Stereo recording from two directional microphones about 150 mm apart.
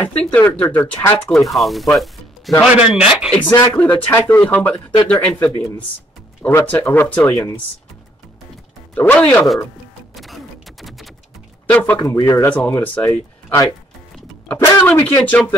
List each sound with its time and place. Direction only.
0.2 s speech: 10° left (ahead or behind)
1.5 s speech: centre (ahead or behind)
3.3 s speech: 10° left (ahead or behind)
8.9 s speech: 10° left (ahead or behind)
10.1 s a sound: centre (ahead or behind)
11.7 s speech: 10° left (ahead or behind)
12.0 s speech: 20° left (ahead or behind)